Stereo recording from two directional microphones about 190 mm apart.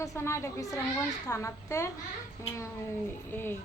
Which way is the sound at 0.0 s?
15° left (ahead or behind).